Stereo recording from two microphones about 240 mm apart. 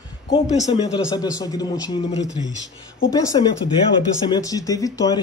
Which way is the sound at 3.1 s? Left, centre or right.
Centre.